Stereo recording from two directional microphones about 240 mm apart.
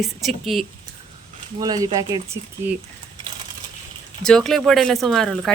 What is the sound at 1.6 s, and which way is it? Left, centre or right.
Speech, centre.